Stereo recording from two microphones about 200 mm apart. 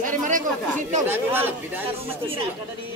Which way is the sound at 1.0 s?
10° right (ahead or behind).